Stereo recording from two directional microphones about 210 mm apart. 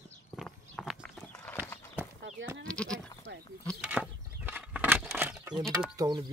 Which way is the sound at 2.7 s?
5° left (ahead or behind).